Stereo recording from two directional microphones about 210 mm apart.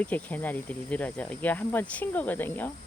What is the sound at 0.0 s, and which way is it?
Speech, 10° left (ahead or behind).